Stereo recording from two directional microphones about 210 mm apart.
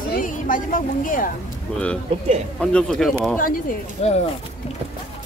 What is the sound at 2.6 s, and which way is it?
Speech, 5° left (ahead or behind).